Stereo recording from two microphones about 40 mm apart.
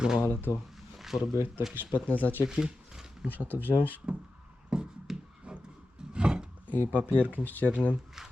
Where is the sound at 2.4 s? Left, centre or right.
Centre.